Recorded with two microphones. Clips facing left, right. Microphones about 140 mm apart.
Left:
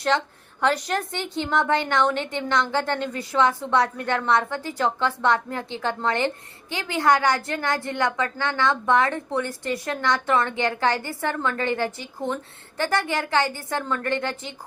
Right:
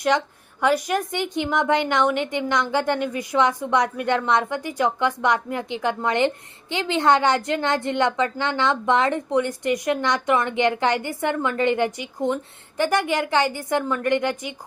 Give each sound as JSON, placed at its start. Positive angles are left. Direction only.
{"t": 0.1, "sound": "a woman's voice", "side_deg": -15}